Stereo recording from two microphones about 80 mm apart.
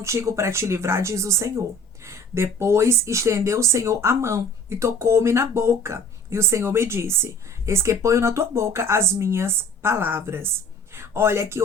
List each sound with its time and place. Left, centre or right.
0.0 s speech: right